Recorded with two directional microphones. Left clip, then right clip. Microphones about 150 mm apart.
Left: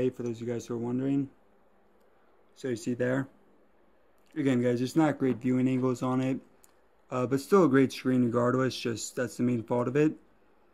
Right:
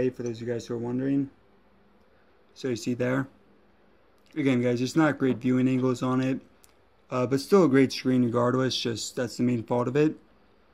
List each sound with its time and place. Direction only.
0.0 s speech: 25° left (ahead or behind)
2.5 s speech: 5° left (ahead or behind)
4.3 s speech: 10° left (ahead or behind)